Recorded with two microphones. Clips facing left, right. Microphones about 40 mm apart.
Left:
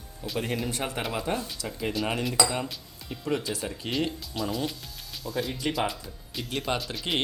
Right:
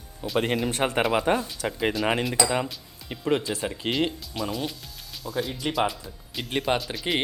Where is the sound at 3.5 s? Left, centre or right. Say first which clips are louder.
Right 3 dB; right.